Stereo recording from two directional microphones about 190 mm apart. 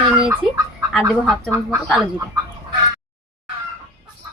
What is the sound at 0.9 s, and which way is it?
A woman's voice, centre (ahead or behind).